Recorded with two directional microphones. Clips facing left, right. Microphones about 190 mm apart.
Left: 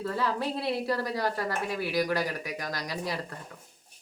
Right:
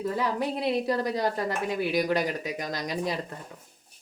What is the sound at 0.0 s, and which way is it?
A woman's voice, 15° right (ahead or behind).